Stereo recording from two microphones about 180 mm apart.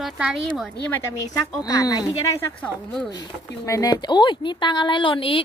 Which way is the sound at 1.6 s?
20° left (ahead or behind).